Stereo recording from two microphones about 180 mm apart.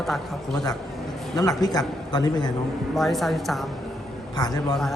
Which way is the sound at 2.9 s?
Centre (ahead or behind).